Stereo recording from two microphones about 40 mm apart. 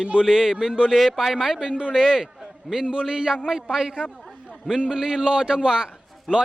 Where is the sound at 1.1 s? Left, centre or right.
Centre.